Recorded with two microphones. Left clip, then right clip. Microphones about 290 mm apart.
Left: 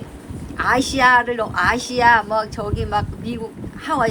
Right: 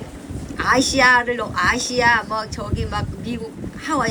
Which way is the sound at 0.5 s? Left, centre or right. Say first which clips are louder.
Right 1 dB; centre.